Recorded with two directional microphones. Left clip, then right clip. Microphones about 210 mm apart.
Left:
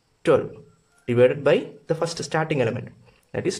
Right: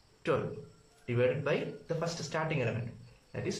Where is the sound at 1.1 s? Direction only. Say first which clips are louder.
Left 12 dB; 45° left (ahead or behind).